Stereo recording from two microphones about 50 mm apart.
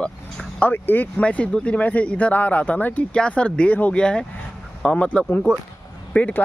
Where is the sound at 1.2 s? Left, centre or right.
Left.